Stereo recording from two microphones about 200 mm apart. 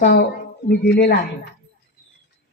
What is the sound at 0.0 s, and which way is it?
Speech, 55° left (ahead or behind).